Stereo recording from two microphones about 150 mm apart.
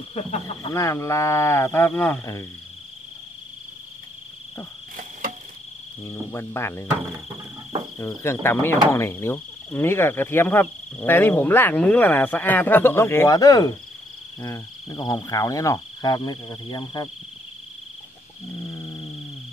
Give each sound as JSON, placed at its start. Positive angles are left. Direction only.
{"t": 0.7, "sound": "speech", "side_deg": 20}
{"t": 6.0, "sound": "speech", "side_deg": 15}
{"t": 8.0, "sound": "speech", "side_deg": 15}
{"t": 14.4, "sound": "cricket", "side_deg": 25}
{"t": 18.7, "sound": "a sound", "side_deg": 20}